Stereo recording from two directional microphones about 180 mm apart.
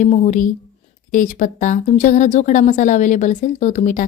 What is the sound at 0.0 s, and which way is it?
A woman's voice, 45° left (ahead or behind).